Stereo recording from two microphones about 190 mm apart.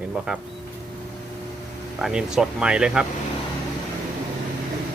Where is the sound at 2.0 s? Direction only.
5° right (ahead or behind).